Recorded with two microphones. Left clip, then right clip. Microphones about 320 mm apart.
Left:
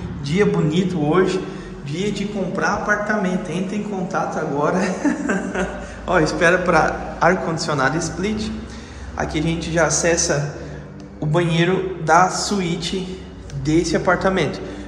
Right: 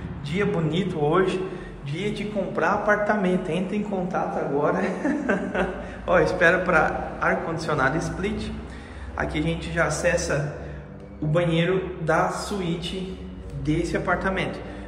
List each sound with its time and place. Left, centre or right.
0.2 s a man's voice: centre
11.3 s a man's voice: centre
13.7 s speech: centre